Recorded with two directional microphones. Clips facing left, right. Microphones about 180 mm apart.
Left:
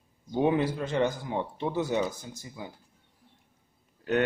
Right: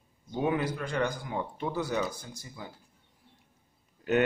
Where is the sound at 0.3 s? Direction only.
25° left (ahead or behind).